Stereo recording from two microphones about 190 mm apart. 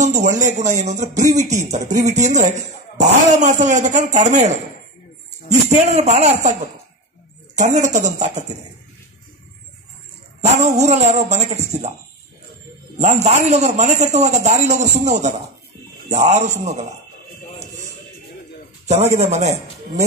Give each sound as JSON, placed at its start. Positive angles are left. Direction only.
{"t": 0.0, "sound": "a sound", "side_deg": -40}
{"t": 0.8, "sound": "a man's voice", "side_deg": -35}
{"t": 3.4, "sound": "a man's voice", "side_deg": -40}
{"t": 5.7, "sound": "a man's voice", "side_deg": -35}
{"t": 7.5, "sound": "a man's voice", "side_deg": -40}
{"t": 10.4, "sound": "a man's voice", "side_deg": -35}
{"t": 13.0, "sound": "a man's voice", "side_deg": -35}
{"t": 19.1, "sound": "a man's voice", "side_deg": -35}